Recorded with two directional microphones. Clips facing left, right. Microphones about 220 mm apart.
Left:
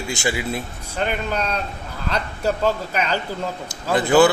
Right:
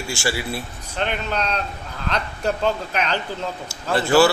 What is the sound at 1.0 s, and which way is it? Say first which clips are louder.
A man's voice: left 1 dB; 10° left (ahead or behind).